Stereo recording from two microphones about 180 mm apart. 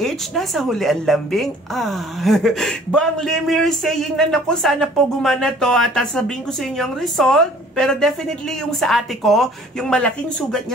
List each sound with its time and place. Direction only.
0.0 s a woman's voice: centre (ahead or behind)